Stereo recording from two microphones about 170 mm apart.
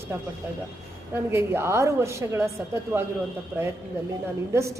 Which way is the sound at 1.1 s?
15° right (ahead or behind).